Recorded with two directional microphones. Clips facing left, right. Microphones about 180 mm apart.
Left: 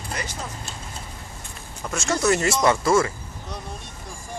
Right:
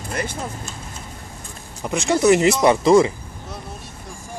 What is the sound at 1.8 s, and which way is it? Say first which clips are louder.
Speech: right 6 dB; 15° right (ahead or behind).